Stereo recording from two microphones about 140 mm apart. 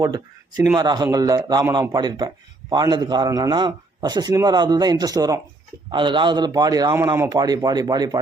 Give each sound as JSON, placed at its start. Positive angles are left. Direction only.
{"t": 0.0, "sound": "a man's voice", "side_deg": -25}